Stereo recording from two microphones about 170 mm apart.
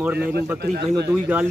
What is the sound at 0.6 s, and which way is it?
Speech, 65° right (ahead or behind).